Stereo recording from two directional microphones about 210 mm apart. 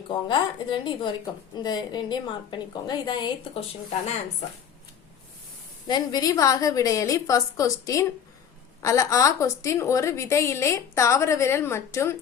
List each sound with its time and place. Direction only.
0.1 s a woman's voice: 20° left (ahead or behind)
5.9 s a woman's voice: 20° left (ahead or behind)